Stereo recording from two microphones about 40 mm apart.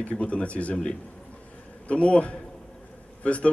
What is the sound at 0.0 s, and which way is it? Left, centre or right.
Speech, left.